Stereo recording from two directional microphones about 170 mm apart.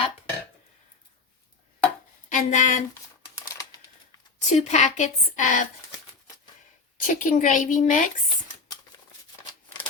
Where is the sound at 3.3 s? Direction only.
20° left (ahead or behind).